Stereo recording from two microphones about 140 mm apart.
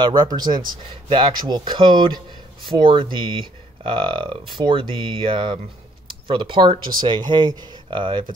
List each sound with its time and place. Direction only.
0.0 s speech: 30° right (ahead or behind)